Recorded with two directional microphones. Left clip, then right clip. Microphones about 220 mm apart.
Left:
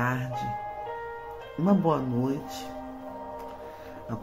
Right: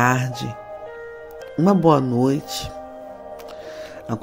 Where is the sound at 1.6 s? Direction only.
45° right (ahead or behind).